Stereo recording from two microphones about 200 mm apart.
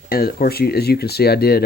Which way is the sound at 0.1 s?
50° left (ahead or behind).